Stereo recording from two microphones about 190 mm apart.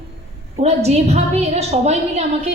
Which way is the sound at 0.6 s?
35° right (ahead or behind).